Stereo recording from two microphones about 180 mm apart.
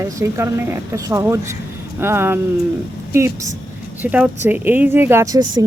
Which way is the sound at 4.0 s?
10° right (ahead or behind).